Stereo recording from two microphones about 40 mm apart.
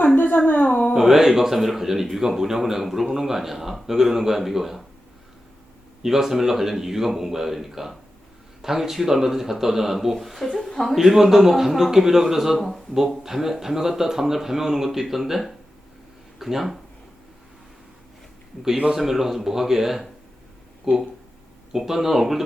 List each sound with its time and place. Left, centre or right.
0.3 s speech: left
0.9 s speech: centre
6.0 s speech: centre
18.9 s speech: centre